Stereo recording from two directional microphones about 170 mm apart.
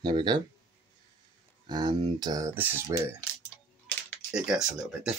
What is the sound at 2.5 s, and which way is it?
Speech, 10° right (ahead or behind).